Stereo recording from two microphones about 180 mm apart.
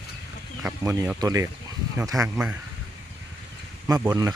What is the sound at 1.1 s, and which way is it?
Speech, 20° right (ahead or behind).